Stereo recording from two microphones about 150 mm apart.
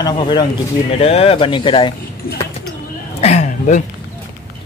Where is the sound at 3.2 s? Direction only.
50° left (ahead or behind).